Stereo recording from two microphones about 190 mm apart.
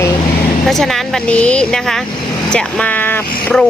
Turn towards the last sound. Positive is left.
turn(degrees=10)  # may be behind; listen again after turning